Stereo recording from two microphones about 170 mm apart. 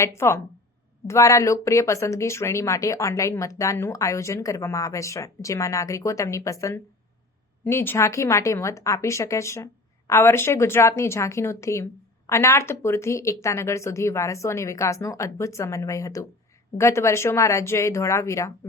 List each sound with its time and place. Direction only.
0.0 s speech: 15° left (ahead or behind)